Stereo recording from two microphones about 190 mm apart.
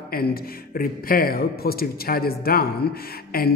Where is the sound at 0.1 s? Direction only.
50° left (ahead or behind).